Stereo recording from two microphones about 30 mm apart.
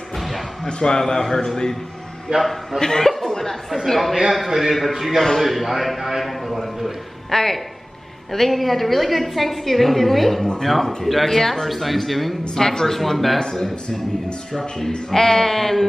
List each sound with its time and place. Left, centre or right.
0.7 s a man's voice: left
1.0 s speech: centre
2.3 s a man's voice: right
2.8 s a man's voice: centre
3.7 s a woman's voice: centre
7.2 s a woman's voice: centre
12.5 s speech: centre
14.5 s speech: centre